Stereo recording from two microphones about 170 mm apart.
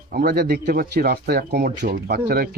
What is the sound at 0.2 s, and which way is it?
A man's voice, 65° right (ahead or behind).